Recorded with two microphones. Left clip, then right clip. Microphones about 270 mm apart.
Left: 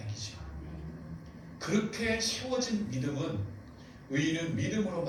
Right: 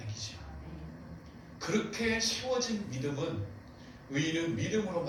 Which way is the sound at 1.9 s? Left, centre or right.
Left.